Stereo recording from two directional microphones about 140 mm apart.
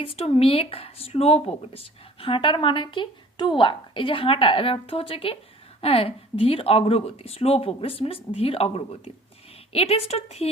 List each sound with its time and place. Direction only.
0.0 s speech: 45° left (ahead or behind)